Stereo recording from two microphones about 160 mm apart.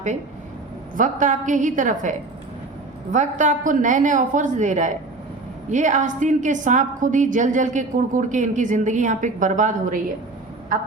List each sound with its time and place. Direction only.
0.9 s a woman's voice: 55° right (ahead or behind)